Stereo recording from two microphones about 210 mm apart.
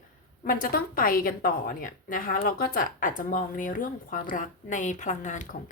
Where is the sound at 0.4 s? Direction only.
40° left (ahead or behind).